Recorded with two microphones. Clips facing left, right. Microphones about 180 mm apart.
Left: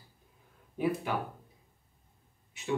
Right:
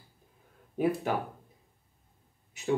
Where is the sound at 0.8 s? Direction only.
45° right (ahead or behind).